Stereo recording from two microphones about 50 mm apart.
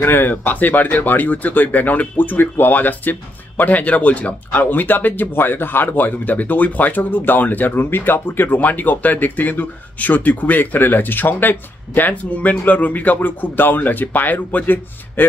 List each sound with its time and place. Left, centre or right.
0.0 s speech: left